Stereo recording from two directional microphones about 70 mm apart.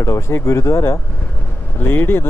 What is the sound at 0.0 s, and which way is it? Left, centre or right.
Speech, left.